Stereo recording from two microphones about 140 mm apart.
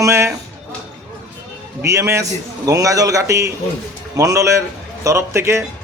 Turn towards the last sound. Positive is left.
turn(degrees=-20)  # may be behind; listen again after turning